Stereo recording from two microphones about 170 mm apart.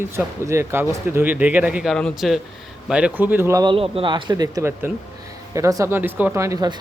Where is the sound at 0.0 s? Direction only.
15° right (ahead or behind); by 2.4 s centre (ahead or behind).